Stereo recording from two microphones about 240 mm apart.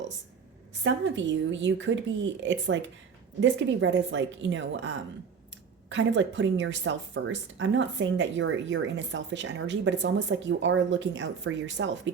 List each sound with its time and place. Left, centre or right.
0.9 s a woman's voice: right
5.9 s a woman's voice: right